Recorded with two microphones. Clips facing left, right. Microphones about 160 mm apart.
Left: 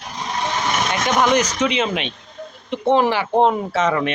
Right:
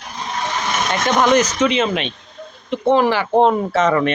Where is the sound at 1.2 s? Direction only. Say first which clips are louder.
Right 3 dB; 10° left (ahead or behind).